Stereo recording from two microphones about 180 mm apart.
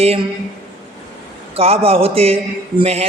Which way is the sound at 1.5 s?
35° right (ahead or behind).